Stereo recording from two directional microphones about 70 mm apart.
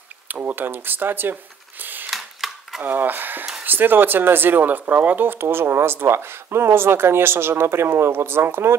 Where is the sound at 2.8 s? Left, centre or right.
Right.